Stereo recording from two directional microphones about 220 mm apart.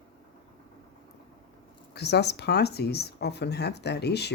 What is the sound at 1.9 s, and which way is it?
Speech, 50° left (ahead or behind).